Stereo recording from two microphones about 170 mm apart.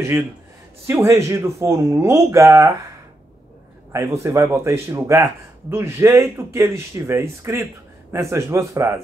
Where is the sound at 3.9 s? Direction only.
15° right (ahead or behind).